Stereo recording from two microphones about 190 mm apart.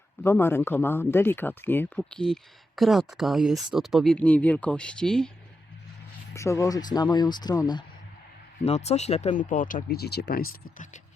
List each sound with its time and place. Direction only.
0.2 s speech: 10° left (ahead or behind)
6.3 s speech: 15° left (ahead or behind)
8.6 s speech: 35° left (ahead or behind)